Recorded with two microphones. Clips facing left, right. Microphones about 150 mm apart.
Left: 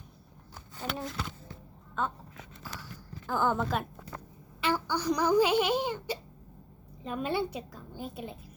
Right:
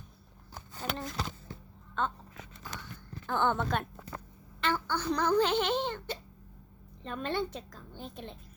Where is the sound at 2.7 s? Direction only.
5° left (ahead or behind).